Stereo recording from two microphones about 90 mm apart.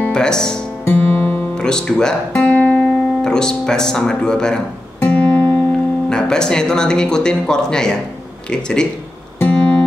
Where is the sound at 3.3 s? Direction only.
5° left (ahead or behind).